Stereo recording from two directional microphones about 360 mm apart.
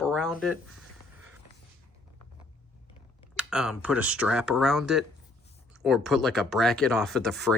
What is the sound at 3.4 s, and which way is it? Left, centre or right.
Speech, centre.